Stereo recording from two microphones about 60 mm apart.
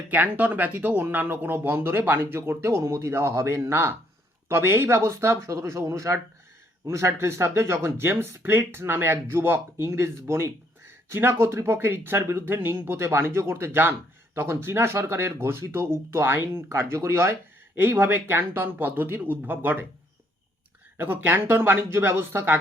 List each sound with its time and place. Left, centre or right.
0.1 s speech: right
17.7 s speech: right
21.0 s speech: right